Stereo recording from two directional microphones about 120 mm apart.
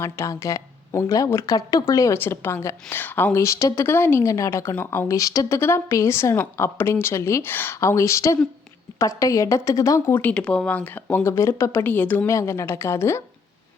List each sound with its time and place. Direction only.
0.0 s speech: 25° left (ahead or behind)
10.2 s speech: 10° left (ahead or behind)